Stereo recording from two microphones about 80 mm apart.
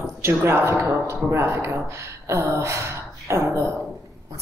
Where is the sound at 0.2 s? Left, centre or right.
Right.